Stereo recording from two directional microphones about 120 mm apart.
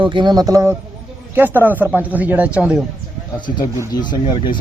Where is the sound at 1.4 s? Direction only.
15° right (ahead or behind).